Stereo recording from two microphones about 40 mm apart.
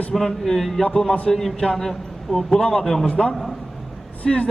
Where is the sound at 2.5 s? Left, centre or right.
Left.